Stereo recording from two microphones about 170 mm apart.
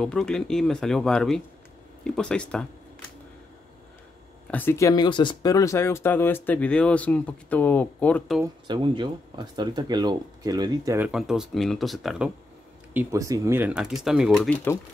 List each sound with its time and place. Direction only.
0.0 s speech: 5° left (ahead or behind)
4.5 s speech: 10° left (ahead or behind)
8.6 s speech: 25° right (ahead or behind)
11.0 s speech: 5° right (ahead or behind)
12.9 s speech: 20° right (ahead or behind); by 14.8 s 10° left (ahead or behind)